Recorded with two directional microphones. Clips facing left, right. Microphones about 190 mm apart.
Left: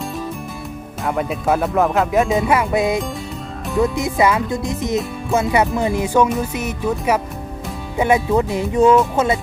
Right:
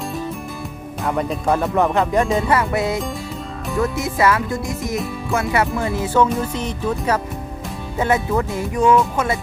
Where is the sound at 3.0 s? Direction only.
Centre (ahead or behind).